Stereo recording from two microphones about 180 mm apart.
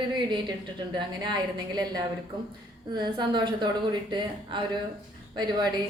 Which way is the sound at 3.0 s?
25° right (ahead or behind).